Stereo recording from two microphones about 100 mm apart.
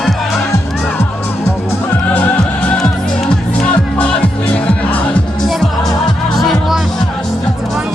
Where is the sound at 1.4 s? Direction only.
20° left (ahead or behind).